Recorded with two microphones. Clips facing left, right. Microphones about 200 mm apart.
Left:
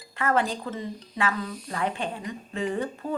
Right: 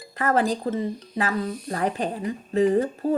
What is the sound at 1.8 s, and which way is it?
Speech, 40° right (ahead or behind).